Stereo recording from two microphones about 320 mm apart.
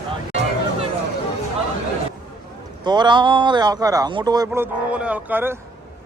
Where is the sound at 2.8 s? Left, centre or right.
Centre.